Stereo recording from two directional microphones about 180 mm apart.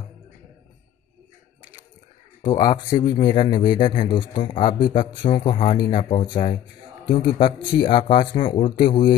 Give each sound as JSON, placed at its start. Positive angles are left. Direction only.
{"t": 2.4, "sound": "speech", "side_deg": 25}